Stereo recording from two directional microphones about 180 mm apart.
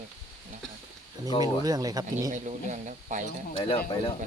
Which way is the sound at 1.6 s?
20° right (ahead or behind).